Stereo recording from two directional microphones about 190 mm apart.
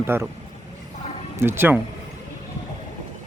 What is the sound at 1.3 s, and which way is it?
Speech, 10° right (ahead or behind).